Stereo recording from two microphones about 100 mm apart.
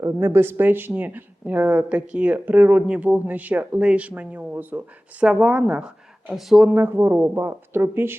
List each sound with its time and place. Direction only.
0.0 s speech: 25° right (ahead or behind); by 6.7 s 5° right (ahead or behind)
6.7 s speech: 20° right (ahead or behind)